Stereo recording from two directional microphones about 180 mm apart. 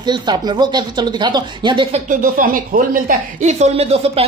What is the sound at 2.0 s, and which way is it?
Speech, 50° right (ahead or behind).